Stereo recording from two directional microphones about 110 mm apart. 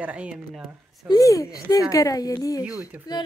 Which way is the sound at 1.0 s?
35° left (ahead or behind).